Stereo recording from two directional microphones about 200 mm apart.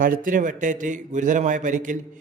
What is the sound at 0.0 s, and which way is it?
A man's voice, 45° right (ahead or behind).